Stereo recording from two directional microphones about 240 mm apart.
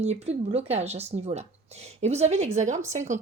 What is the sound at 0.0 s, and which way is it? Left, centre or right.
Speech, right.